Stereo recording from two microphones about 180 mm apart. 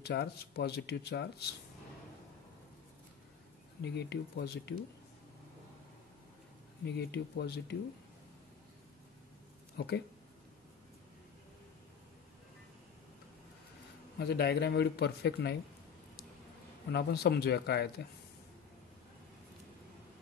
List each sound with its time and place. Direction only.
0.0 s speech: 65° left (ahead or behind)
3.8 s speech: 70° left (ahead or behind)
7.0 s speech: 70° left (ahead or behind)
9.8 s speech: 65° left (ahead or behind)
14.1 s speech: 65° left (ahead or behind)
16.9 s speech: 65° left (ahead or behind)